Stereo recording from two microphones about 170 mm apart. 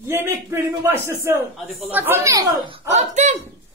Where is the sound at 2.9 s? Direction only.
45° right (ahead or behind).